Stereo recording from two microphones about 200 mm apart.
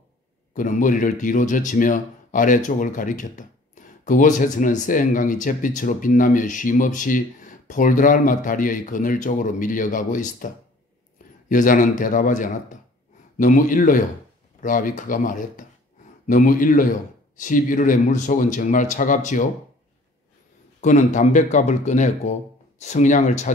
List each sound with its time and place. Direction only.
0.6 s a man's voice: 40° left (ahead or behind)
20.8 s speech: 40° left (ahead or behind)